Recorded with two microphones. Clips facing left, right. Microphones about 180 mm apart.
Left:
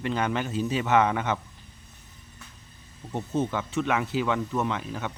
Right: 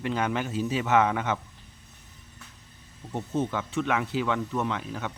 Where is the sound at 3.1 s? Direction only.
Centre (ahead or behind).